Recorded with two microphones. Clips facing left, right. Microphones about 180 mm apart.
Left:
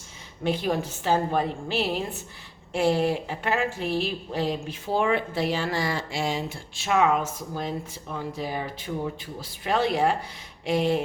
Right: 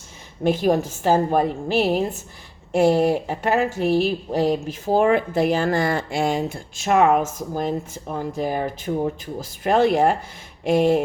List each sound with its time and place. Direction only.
0.4 s a woman's voice: 45° right (ahead or behind)